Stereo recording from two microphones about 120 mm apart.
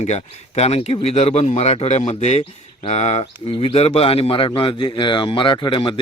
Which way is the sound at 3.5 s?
55° left (ahead or behind).